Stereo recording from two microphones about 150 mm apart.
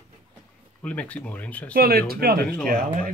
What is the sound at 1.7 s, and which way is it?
Speech, 90° right.